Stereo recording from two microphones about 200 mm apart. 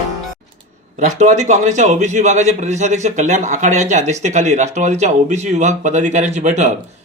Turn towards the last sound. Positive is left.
turn(degrees=-35)  # may be behind; listen again after turning